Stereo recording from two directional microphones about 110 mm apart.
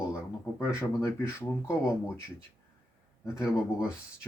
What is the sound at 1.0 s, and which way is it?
Speech, 20° left (ahead or behind).